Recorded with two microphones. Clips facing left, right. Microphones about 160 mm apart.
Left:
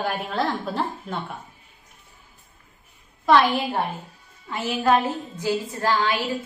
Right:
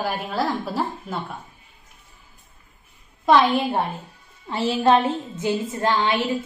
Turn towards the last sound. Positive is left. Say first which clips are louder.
# right 2 dB
turn(degrees=-25)  # may be behind; listen again after turning